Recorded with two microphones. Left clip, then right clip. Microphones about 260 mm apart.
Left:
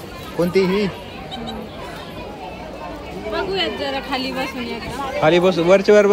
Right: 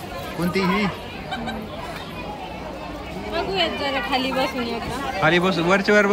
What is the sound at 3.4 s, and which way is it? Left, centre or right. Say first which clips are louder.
Speech: right 1 dB; centre.